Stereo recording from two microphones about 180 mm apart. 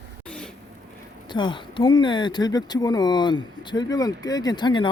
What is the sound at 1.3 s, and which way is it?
Speech, 25° left (ahead or behind).